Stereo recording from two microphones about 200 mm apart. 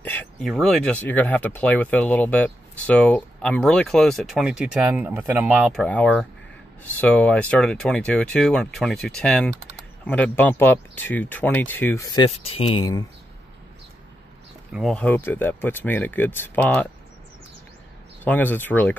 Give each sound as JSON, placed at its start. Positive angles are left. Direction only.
{"t": 0.0, "sound": "speech", "side_deg": 10}
{"t": 12.3, "sound": "speech", "side_deg": 30}
{"t": 14.7, "sound": "speech", "side_deg": 0}
{"t": 18.2, "sound": "speech", "side_deg": 10}